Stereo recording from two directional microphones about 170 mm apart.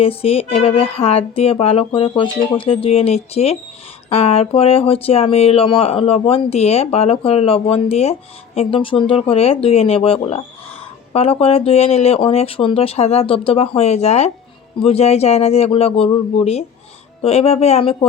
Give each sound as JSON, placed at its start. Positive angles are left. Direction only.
{"t": 0.0, "sound": "speech", "side_deg": 35}